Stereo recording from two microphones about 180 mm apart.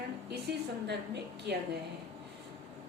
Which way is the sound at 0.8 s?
70° right (ahead or behind).